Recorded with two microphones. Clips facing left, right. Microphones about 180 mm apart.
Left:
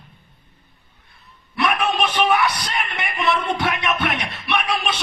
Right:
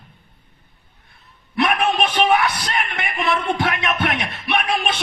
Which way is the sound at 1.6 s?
55° right (ahead or behind).